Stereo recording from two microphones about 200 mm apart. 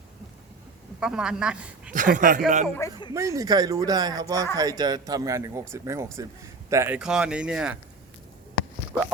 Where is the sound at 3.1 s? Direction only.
15° right (ahead or behind).